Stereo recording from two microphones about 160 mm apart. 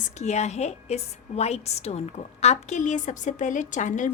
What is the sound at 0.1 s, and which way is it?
A woman's voice, 45° left (ahead or behind).